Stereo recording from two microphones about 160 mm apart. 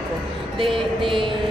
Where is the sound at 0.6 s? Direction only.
30° right (ahead or behind).